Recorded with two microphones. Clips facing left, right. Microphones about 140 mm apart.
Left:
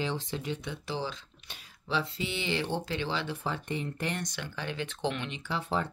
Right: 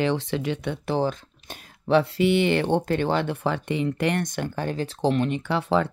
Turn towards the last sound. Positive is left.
turn(degrees=-80)